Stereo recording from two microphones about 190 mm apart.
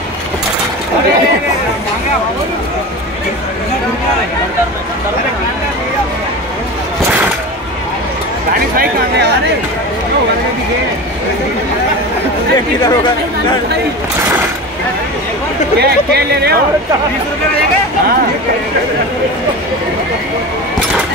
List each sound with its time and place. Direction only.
15.8 s speech: 60° right (ahead or behind)